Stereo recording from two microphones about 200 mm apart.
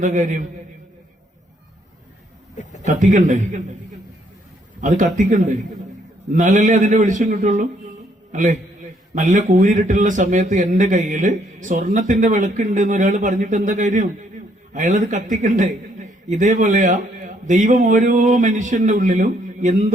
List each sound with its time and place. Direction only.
0.0 s a man's voice: 40° right (ahead or behind)
2.8 s a man's voice: 40° right (ahead or behind)
4.8 s a man's voice: 40° right (ahead or behind)